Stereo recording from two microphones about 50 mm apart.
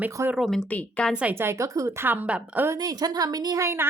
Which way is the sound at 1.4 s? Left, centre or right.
Right.